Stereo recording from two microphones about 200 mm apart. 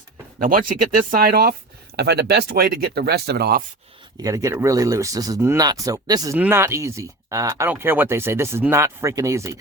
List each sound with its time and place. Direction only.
0.4 s speech: 45° right (ahead or behind)
4.2 s speech: 15° right (ahead or behind)